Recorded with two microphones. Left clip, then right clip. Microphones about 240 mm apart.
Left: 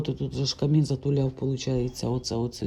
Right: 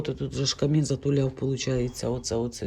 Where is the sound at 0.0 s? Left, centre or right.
Centre.